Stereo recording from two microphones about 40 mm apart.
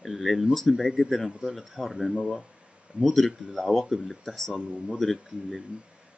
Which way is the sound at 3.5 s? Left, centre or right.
Centre.